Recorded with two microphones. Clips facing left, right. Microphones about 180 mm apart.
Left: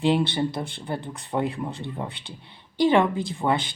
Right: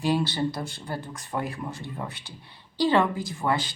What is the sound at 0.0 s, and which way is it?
Speech, 25° left (ahead or behind).